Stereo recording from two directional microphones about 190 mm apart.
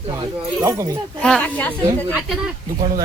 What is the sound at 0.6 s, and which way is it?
Speech, 15° right (ahead or behind).